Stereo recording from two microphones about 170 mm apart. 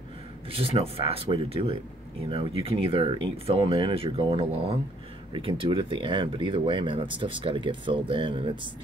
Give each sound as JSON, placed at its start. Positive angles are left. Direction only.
{"t": 0.5, "sound": "speech", "side_deg": -35}